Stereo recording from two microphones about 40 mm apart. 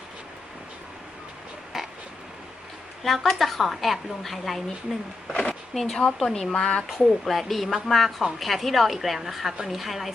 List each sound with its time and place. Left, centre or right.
1.7 s frog: centre
3.0 s a woman's voice: centre
4.9 s speech: centre
5.3 s speech: left
5.7 s speech: centre
6.6 s speech: left
6.8 s a woman's voice: centre